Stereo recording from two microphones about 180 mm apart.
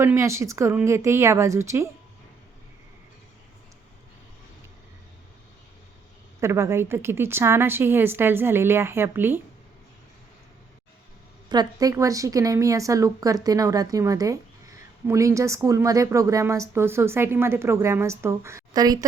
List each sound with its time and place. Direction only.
0.0 s speech: 15° right (ahead or behind)
6.4 s speech: 15° right (ahead or behind)
11.4 s a woman's voice: 20° right (ahead or behind)